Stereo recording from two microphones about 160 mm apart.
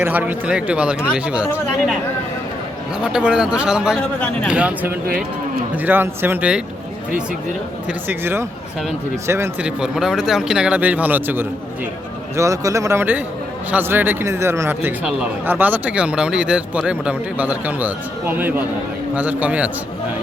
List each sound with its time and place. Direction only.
0.0 s a man's voice: 10° right (ahead or behind)
3.0 s a man's voice: 5° right (ahead or behind)
7.9 s a man's voice: 15° right (ahead or behind)